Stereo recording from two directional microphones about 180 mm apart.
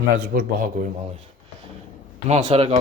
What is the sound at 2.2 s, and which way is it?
Speech, 35° right (ahead or behind).